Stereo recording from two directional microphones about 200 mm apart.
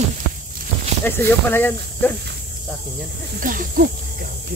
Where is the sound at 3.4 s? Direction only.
45° right (ahead or behind).